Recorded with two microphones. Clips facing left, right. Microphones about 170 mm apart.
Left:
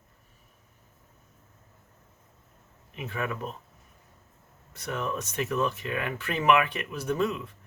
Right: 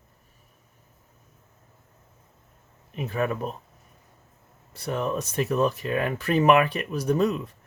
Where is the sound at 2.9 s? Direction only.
40° right (ahead or behind).